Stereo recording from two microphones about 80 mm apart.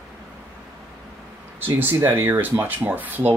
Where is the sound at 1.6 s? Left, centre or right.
Right.